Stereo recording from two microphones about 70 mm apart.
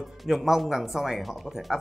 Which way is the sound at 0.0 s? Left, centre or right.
Centre.